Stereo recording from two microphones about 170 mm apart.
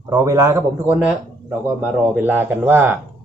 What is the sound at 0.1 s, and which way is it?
Speech, 20° right (ahead or behind).